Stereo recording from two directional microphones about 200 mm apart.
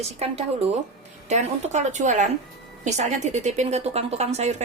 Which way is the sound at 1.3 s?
35° right (ahead or behind).